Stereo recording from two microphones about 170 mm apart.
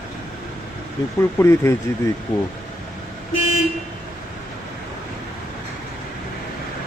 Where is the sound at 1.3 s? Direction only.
15° left (ahead or behind).